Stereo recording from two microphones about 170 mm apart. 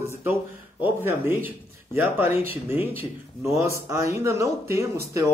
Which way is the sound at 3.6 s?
15° right (ahead or behind).